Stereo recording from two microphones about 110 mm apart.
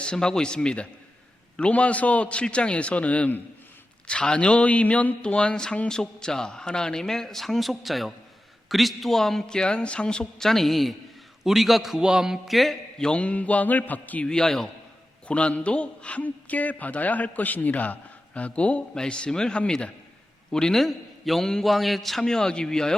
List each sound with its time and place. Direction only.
0.0 s a man's voice: 5° left (ahead or behind)